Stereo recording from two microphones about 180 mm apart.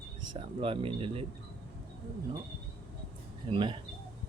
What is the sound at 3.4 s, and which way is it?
Speech, 30° right (ahead or behind).